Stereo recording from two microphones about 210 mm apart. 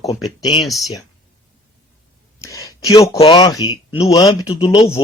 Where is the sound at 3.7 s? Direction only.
10° right (ahead or behind).